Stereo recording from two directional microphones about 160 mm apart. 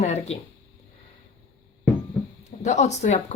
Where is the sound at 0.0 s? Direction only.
45° left (ahead or behind).